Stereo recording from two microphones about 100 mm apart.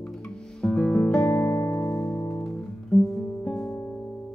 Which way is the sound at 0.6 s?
10° left (ahead or behind).